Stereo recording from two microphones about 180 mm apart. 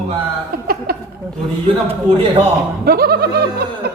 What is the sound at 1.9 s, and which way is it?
Speech, 30° right (ahead or behind).